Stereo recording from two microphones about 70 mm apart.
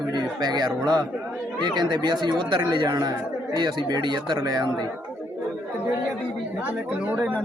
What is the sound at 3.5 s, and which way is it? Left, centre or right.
Speech, right.